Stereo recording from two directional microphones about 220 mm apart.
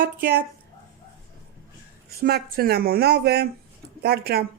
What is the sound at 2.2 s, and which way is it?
Speech, 45° right (ahead or behind).